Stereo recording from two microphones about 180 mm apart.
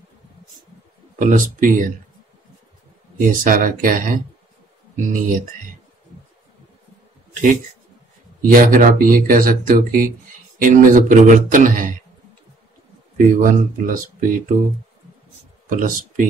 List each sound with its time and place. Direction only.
1.2 s speech: 50° right (ahead or behind)
3.2 s speech: 50° right (ahead or behind)
8.4 s speech: 50° right (ahead or behind)
13.4 s speech: 50° right (ahead or behind)
15.7 s speech: 50° right (ahead or behind)